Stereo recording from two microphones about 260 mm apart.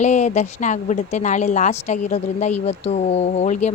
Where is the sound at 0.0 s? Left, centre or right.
Left.